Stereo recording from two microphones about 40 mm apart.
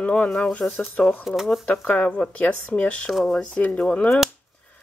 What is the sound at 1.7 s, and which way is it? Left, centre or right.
Speech, left.